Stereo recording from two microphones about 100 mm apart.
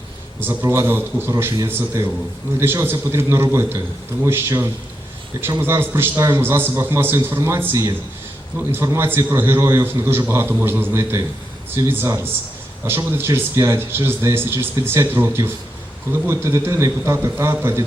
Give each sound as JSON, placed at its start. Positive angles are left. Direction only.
{"t": 0.6, "sound": "a man's voice", "side_deg": -25}